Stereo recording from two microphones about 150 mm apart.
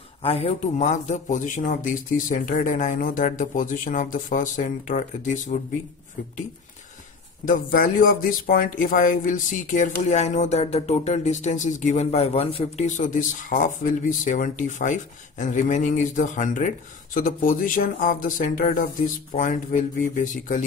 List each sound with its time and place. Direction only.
0.2 s speech: 40° left (ahead or behind); by 5.4 s 55° left (ahead or behind)
7.4 s speech: 70° left (ahead or behind)